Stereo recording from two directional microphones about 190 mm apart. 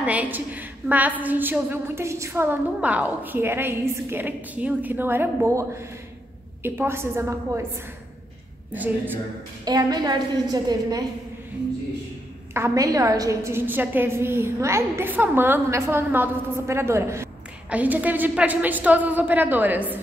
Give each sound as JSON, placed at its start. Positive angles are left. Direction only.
{"t": 0.0, "sound": "a woman's voice", "side_deg": -10}
{"t": 8.7, "sound": "a woman's voice", "side_deg": -10}
{"t": 9.7, "sound": "a woman's voice", "side_deg": -20}
{"t": 12.5, "sound": "a woman's voice", "side_deg": -15}